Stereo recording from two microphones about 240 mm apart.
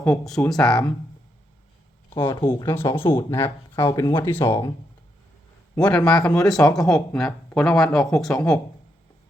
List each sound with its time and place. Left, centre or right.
0.0 s speech: centre
2.1 s speech: centre
5.7 s speech: centre